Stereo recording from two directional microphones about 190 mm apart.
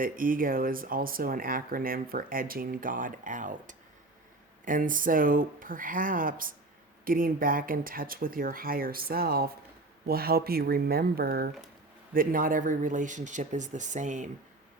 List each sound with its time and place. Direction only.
0.0 s speech: 45° right (ahead or behind)